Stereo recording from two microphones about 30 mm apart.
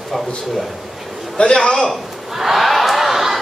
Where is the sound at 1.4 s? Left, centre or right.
Left.